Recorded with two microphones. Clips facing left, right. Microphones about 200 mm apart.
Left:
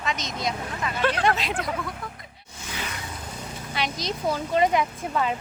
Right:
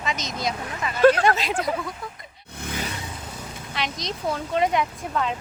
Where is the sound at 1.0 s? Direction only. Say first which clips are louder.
Right 10 dB; 45° right (ahead or behind).